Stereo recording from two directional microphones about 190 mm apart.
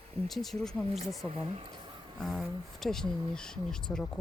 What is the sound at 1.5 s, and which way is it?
Speech, 25° right (ahead or behind).